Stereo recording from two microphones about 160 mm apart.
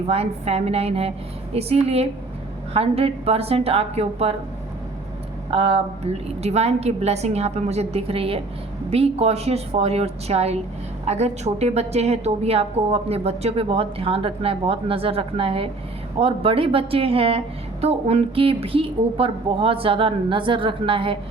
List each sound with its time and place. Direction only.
0.1 s a woman's voice: 40° right (ahead or behind)
5.5 s a woman's voice: 35° right (ahead or behind)